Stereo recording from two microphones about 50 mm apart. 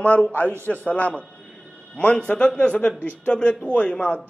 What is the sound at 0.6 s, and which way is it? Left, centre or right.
A man's voice, left.